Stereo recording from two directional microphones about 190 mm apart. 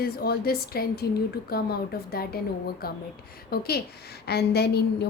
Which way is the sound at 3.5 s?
55° left (ahead or behind).